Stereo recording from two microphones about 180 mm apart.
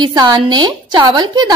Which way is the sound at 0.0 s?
25° right (ahead or behind).